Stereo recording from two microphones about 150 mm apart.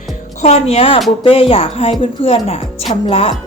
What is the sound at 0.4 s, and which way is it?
A woman's voice, 45° left (ahead or behind).